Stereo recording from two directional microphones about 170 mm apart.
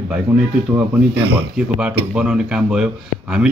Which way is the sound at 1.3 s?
5° right (ahead or behind).